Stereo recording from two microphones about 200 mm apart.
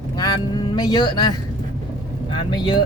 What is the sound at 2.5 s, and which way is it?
Speech, 20° left (ahead or behind).